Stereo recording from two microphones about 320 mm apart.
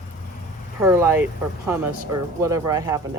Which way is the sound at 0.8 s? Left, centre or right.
Centre.